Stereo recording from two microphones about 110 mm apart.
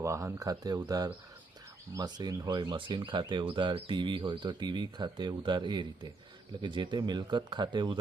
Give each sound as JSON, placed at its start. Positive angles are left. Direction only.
{"t": 0.0, "sound": "speech", "side_deg": -25}